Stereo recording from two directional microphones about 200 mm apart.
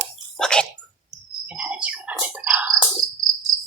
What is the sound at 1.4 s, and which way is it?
Bird, 5° right (ahead or behind).